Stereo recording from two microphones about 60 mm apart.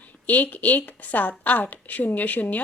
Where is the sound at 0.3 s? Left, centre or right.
Left.